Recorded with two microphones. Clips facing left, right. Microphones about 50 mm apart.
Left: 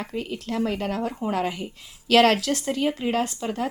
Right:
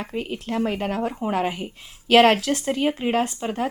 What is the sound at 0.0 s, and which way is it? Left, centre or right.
Speech, right.